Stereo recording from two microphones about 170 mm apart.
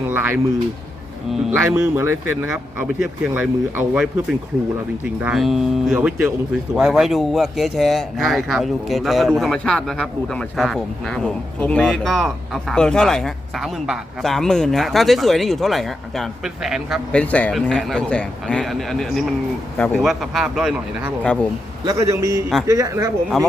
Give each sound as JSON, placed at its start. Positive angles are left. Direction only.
{"t": 0.1, "sound": "speech", "side_deg": -10}
{"t": 1.5, "sound": "a man's voice", "side_deg": -10}
{"t": 21.8, "sound": "speech", "side_deg": -20}